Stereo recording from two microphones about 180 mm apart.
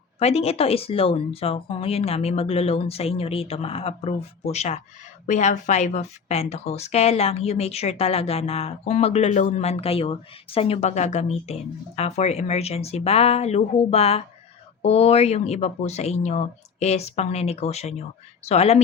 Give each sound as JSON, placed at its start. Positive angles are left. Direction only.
{"t": 0.2, "sound": "speech", "side_deg": 35}